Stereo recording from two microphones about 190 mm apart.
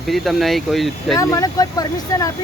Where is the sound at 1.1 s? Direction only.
15° left (ahead or behind).